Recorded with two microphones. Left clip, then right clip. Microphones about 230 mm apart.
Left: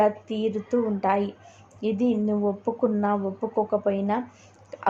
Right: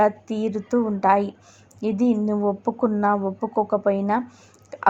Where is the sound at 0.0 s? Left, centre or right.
Right.